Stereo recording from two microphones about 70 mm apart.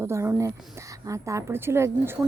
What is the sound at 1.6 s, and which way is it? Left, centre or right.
Speech, right.